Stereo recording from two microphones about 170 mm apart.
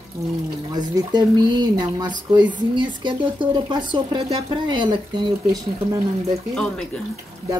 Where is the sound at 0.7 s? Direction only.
25° right (ahead or behind).